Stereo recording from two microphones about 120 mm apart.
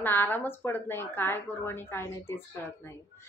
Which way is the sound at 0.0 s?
15° left (ahead or behind).